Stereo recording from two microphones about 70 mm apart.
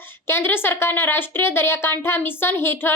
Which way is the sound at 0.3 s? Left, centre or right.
Left.